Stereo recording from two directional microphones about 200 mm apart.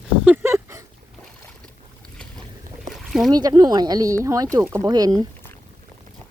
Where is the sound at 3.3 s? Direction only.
20° right (ahead or behind).